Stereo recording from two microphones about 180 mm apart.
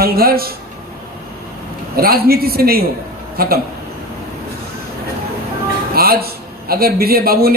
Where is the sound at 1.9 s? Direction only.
55° right (ahead or behind).